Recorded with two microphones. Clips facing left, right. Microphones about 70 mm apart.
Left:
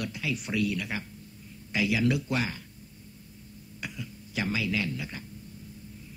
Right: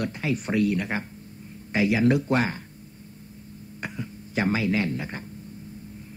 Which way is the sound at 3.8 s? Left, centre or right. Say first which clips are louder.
Right 5 dB; right.